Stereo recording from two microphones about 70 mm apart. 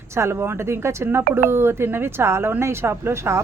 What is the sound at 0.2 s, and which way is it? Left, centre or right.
Speech, right.